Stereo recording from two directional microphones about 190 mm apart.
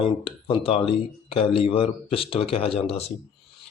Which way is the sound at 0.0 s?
30° left (ahead or behind).